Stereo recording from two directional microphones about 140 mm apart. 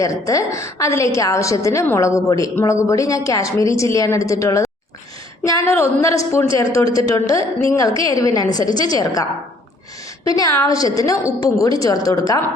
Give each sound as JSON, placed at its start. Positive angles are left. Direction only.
{"t": 0.0, "sound": "a woman's voice", "side_deg": 25}
{"t": 6.5, "sound": "speech", "side_deg": -40}
{"t": 6.9, "sound": "a woman's voice", "side_deg": 25}
{"t": 10.2, "sound": "a woman's voice", "side_deg": 25}